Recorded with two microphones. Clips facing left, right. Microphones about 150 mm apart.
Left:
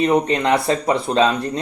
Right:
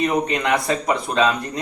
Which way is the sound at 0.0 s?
30° left (ahead or behind).